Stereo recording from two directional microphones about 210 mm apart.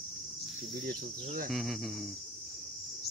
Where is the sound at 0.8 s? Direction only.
40° right (ahead or behind).